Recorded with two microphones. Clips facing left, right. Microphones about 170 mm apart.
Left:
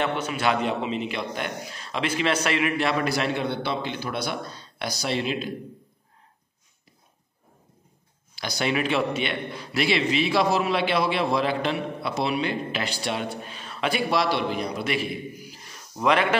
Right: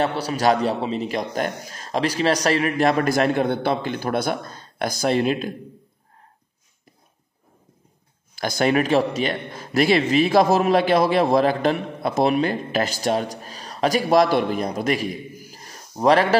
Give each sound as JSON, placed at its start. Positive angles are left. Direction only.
{"t": 0.0, "sound": "a man's voice", "side_deg": -35}
{"t": 8.4, "sound": "a man's voice", "side_deg": -50}